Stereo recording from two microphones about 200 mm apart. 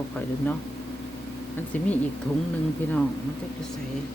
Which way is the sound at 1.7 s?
10° left (ahead or behind).